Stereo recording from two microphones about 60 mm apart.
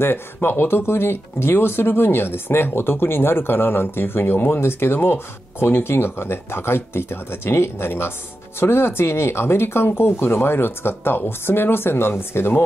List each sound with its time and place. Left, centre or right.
0.0 s speech: left